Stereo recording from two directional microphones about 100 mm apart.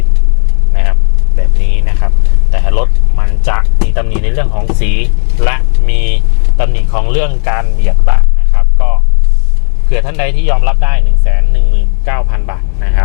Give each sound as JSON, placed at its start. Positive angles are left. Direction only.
{"t": 1.6, "sound": "vehicle", "side_deg": 15}
{"t": 5.5, "sound": "speech", "side_deg": 15}
{"t": 8.5, "sound": "a sound", "side_deg": 20}
{"t": 9.9, "sound": "speech", "side_deg": 15}